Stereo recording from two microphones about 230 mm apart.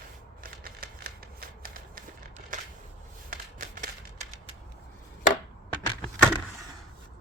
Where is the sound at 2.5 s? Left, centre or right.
Right.